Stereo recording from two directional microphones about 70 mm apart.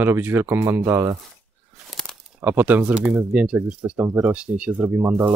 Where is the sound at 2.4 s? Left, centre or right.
Right.